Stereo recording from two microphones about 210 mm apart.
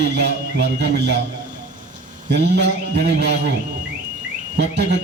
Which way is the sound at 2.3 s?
50° right (ahead or behind).